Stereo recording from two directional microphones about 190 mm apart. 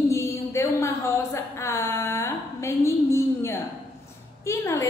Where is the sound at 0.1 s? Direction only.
15° left (ahead or behind).